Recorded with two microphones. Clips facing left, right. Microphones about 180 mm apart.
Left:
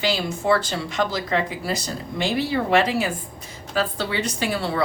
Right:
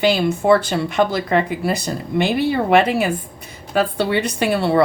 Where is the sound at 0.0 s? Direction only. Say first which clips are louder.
Right 7 dB; 55° right (ahead or behind).